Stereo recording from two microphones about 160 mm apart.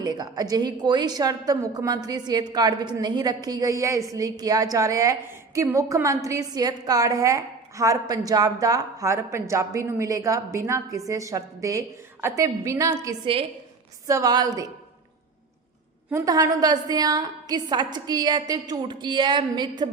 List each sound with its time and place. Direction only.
0.0 s a woman's voice: 25° right (ahead or behind)
16.0 s a woman's voice: 20° right (ahead or behind)